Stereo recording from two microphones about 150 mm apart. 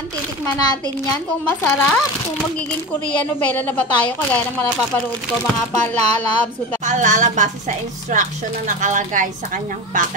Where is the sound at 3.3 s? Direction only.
10° left (ahead or behind).